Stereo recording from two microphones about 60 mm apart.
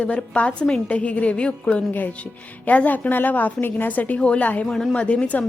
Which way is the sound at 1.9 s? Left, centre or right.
Left.